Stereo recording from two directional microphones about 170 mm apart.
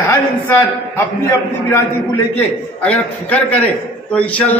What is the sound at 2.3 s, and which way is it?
A man's voice, 10° left (ahead or behind).